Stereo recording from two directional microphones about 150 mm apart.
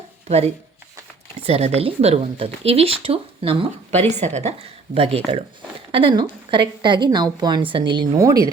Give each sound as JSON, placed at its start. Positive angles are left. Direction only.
{"t": 0.3, "sound": "speech", "side_deg": -45}